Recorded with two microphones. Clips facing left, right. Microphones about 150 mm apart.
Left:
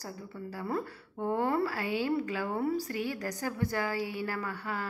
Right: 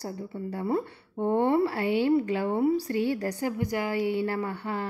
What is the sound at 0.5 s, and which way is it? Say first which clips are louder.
A woman's voice: right 6 dB; 25° right (ahead or behind).